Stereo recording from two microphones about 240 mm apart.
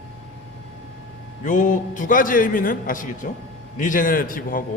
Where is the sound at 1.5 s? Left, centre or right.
Left.